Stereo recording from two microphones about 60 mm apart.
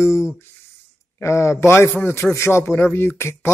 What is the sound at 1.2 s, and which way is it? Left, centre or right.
Music, left.